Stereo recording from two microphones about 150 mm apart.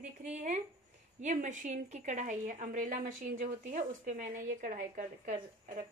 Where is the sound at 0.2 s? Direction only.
50° right (ahead or behind).